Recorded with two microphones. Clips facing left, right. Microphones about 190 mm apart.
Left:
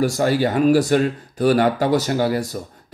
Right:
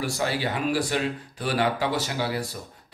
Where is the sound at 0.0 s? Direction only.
45° left (ahead or behind).